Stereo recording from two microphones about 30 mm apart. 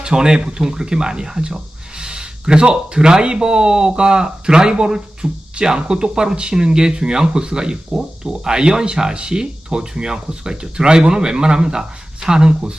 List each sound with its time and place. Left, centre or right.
0.0 s speech: right